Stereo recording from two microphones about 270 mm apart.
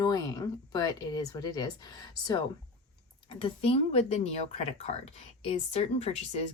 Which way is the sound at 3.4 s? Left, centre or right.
Left.